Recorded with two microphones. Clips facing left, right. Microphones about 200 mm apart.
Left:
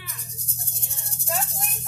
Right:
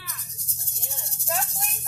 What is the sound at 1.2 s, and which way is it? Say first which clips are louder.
Music: even; centre (ahead or behind).